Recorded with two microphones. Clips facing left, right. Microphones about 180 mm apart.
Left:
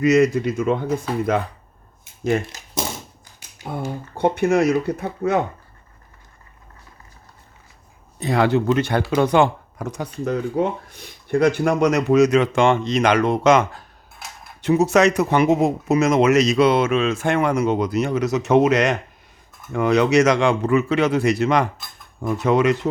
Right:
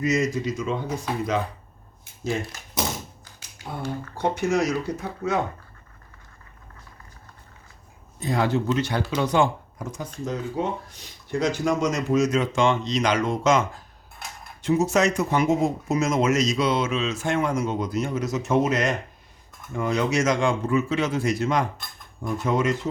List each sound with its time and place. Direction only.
0.0 s speech: 65° left (ahead or behind)
3.7 s speech: 50° left (ahead or behind)
8.2 s speech: 70° left (ahead or behind)
10.2 s speech: 60° left (ahead or behind)